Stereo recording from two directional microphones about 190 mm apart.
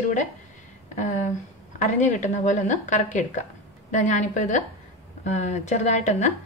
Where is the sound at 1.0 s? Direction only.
40° left (ahead or behind).